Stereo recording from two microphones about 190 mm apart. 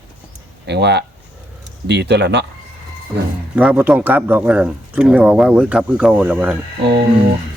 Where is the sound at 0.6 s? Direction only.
65° right (ahead or behind).